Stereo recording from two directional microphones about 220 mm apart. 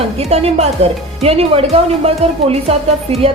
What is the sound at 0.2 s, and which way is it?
A woman's voice, 30° right (ahead or behind).